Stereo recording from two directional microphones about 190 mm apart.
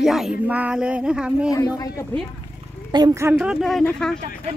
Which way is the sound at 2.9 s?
20° right (ahead or behind).